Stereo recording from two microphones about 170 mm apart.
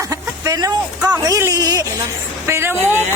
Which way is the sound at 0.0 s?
20° right (ahead or behind).